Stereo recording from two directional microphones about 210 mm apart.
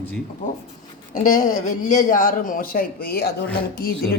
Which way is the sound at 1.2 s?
40° left (ahead or behind).